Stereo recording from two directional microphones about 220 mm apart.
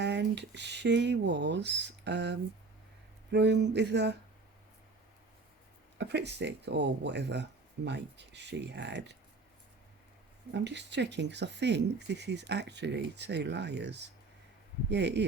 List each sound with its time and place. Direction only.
0.0 s speech: 50° right (ahead or behind)
6.0 s speech: 50° right (ahead or behind)
10.5 s speech: 50° right (ahead or behind)